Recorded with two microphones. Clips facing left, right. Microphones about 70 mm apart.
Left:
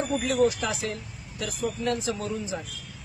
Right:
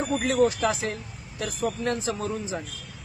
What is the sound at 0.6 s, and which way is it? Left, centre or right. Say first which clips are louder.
A man's voice: right 4 dB; right.